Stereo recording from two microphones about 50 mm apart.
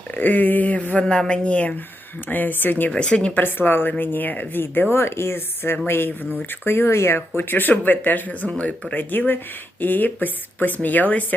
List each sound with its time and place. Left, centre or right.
0.1 s speech: left
1.0 s a woman's voice: centre
2.2 s speech: left
2.9 s speech: centre
3.4 s speech: left
4.9 s speech: left
8.4 s speech: left